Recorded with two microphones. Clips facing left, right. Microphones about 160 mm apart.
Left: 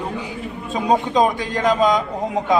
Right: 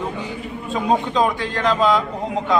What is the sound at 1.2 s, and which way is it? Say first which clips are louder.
Speech: left 2 dB; 15° left (ahead or behind).